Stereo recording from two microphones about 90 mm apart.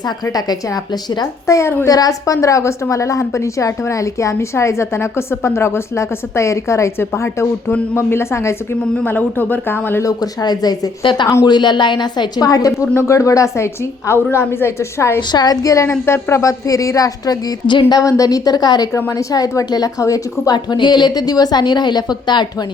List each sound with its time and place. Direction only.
1.5 s a woman's voice: 35° left (ahead or behind)
10.0 s a woman's voice: 45° left (ahead or behind)
11.0 s speech: 65° left (ahead or behind)
11.4 s a woman's voice: 55° left (ahead or behind)
12.9 s a woman's voice: 30° left (ahead or behind)
15.3 s a woman's voice: 50° left (ahead or behind)
17.7 s a woman's voice: 55° left (ahead or behind)
18.0 s a woman's voice: 40° left (ahead or behind)
20.7 s a woman's voice: 55° left (ahead or behind)